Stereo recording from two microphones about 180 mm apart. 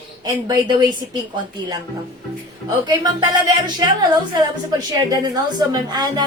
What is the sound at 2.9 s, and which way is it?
A woman's voice, 20° right (ahead or behind).